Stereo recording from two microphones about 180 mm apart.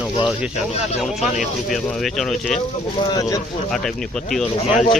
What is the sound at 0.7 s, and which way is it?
Speech, 35° left (ahead or behind).